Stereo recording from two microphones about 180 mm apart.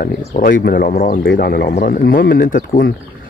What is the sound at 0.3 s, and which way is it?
Speech, 50° left (ahead or behind).